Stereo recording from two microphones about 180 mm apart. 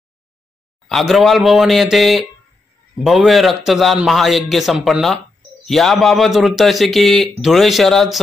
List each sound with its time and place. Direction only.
0.8 s a man's voice: centre (ahead or behind)